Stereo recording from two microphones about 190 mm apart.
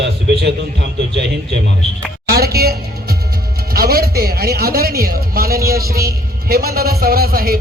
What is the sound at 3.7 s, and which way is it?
Speech, 55° right (ahead or behind).